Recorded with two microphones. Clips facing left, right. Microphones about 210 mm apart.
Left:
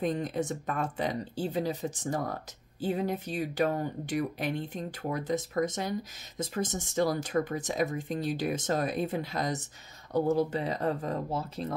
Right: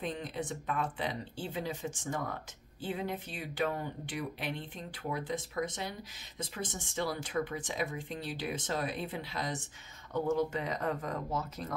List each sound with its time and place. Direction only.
0.0 s speech: 45° left (ahead or behind); by 11.7 s 30° left (ahead or behind)